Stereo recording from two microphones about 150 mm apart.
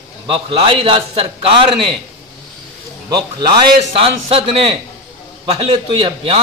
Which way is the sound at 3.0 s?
30° right (ahead or behind).